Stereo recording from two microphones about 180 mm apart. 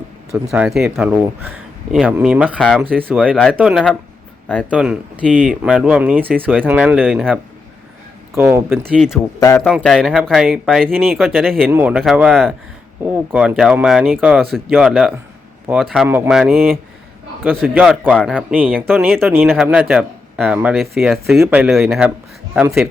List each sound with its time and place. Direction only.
0.5 s speech: 5° right (ahead or behind)
2.9 s speech: 10° right (ahead or behind)
8.4 s speech: 10° right (ahead or behind)
9.4 s speech: 15° left (ahead or behind)
9.6 s speech: centre (ahead or behind)
11.7 s speech: 10° right (ahead or behind)
16.0 s speech: 10° right (ahead or behind)
18.1 s speech: centre (ahead or behind)
18.3 s speech: 10° right (ahead or behind)